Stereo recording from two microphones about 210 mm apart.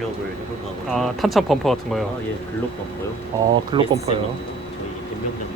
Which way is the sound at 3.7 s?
25° right (ahead or behind).